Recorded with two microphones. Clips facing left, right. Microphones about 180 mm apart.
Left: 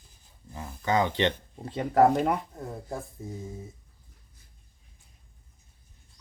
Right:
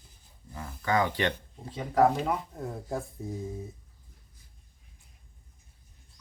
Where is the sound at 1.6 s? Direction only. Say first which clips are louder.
Left 3 dB; 65° left (ahead or behind).